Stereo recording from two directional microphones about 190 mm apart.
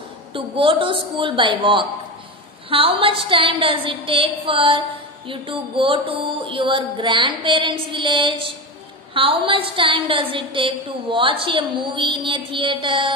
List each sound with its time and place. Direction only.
0.3 s a woman's voice: 25° right (ahead or behind)